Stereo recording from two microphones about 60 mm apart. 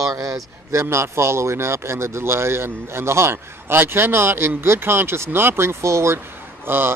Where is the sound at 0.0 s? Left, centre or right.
Right.